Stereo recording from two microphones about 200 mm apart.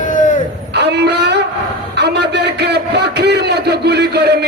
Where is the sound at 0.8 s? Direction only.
55° right (ahead or behind).